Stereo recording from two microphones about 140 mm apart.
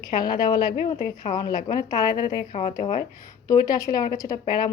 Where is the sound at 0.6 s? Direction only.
70° left (ahead or behind).